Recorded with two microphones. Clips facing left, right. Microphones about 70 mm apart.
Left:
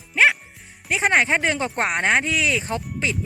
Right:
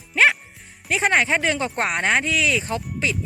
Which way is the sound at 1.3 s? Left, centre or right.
Left.